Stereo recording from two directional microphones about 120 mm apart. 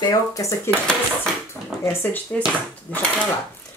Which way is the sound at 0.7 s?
10° left (ahead or behind).